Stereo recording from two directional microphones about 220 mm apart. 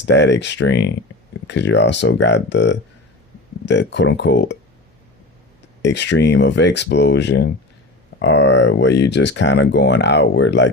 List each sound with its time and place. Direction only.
0.0 s speech: 55° left (ahead or behind)
5.8 s speech: 55° left (ahead or behind)